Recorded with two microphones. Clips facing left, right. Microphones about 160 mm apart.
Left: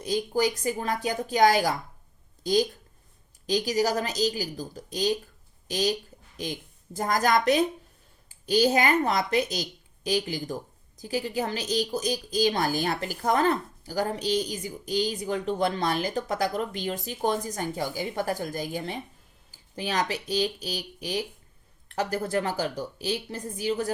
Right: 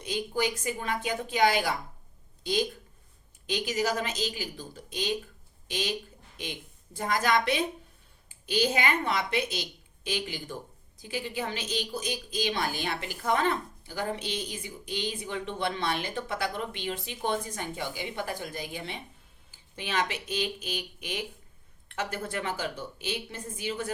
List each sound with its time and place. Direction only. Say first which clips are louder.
0.0 s a woman's voice: left 4 dB; 40° left (ahead or behind)